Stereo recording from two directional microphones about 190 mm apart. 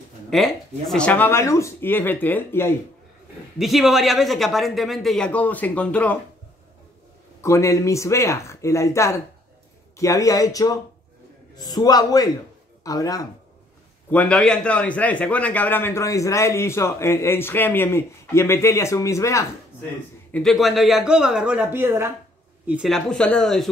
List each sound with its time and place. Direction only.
0.3 s a man's voice: centre (ahead or behind)
3.5 s speech: centre (ahead or behind)
7.4 s a man's voice: 15° left (ahead or behind)
14.1 s a man's voice: 5° left (ahead or behind)
20.2 s speech: 5° left (ahead or behind); by 22.1 s 10° right (ahead or behind)
22.7 s speech: centre (ahead or behind)